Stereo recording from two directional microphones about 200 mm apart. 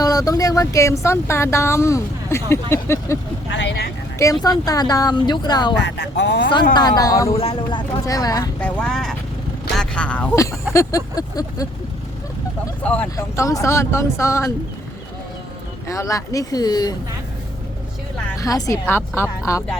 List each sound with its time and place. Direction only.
0.0 s speech: 20° left (ahead or behind)
3.5 s speech: 60° left (ahead or behind)
4.2 s a woman's voice: 15° left (ahead or behind)
5.8 s speech: 60° left (ahead or behind)
6.7 s a woman's voice: 20° left (ahead or behind)
8.8 s speech: 5° left (ahead or behind); by 11.7 s 20° left (ahead or behind)
12.8 s speech: 10° left (ahead or behind)
15.9 s speech: 15° left (ahead or behind)
18.3 s speech: 15° left (ahead or behind)